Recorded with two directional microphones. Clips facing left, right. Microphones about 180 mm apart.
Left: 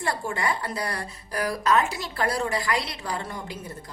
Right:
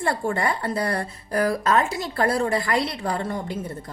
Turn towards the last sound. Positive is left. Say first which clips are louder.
# right 6 dB
turn(degrees=-50)  # may be behind; listen again after turning